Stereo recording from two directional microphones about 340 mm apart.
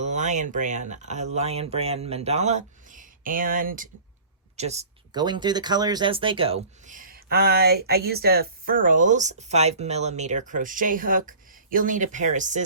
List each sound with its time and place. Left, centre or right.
0.0 s speech: right